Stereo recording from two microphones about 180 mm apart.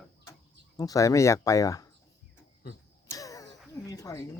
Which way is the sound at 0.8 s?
20° left (ahead or behind).